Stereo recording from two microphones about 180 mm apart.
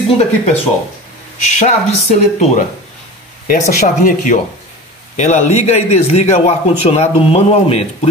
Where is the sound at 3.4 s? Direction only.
45° left (ahead or behind).